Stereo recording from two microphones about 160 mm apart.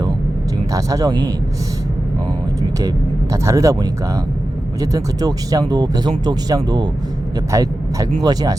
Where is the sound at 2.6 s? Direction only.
20° right (ahead or behind).